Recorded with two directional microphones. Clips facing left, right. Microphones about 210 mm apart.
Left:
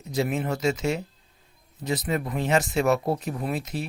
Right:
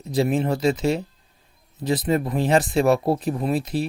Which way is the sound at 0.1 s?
30° right (ahead or behind).